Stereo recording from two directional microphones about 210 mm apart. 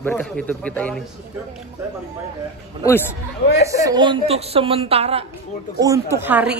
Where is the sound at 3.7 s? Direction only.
15° right (ahead or behind).